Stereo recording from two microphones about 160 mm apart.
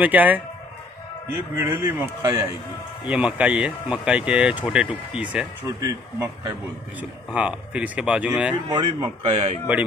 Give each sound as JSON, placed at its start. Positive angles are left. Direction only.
{"t": 0.0, "sound": "speech", "side_deg": -10}
{"t": 1.6, "sound": "speech", "side_deg": -15}
{"t": 5.8, "sound": "speech", "side_deg": -20}
{"t": 7.0, "sound": "speech", "side_deg": -5}
{"t": 8.6, "sound": "a man's voice", "side_deg": -30}